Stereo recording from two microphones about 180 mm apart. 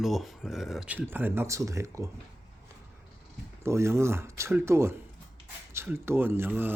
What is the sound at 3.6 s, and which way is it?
Speech, 15° right (ahead or behind).